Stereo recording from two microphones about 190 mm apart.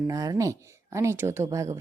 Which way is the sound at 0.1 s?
20° right (ahead or behind).